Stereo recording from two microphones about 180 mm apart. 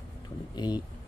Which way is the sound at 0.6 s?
25° left (ahead or behind).